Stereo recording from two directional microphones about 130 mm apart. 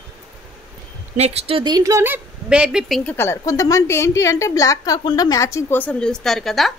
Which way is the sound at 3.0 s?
20° left (ahead or behind).